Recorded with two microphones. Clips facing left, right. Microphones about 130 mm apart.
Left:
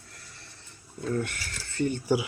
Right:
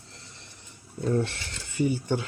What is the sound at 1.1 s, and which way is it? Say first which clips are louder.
Speech: right 3 dB; 25° right (ahead or behind).